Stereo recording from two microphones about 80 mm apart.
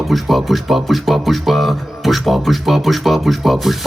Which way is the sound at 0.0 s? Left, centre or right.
Centre.